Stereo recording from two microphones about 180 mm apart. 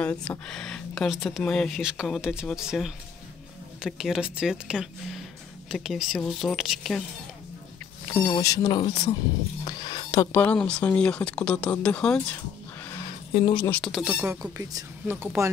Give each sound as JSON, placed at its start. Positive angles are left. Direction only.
{"t": 0.0, "sound": "speech", "side_deg": 10}
{"t": 8.3, "sound": "speech", "side_deg": 20}
{"t": 9.7, "sound": "a sound", "side_deg": 25}
{"t": 10.3, "sound": "speech", "side_deg": 10}
{"t": 13.0, "sound": "a sound", "side_deg": 30}
{"t": 13.7, "sound": "speech", "side_deg": 5}
{"t": 14.4, "sound": "speech", "side_deg": -20}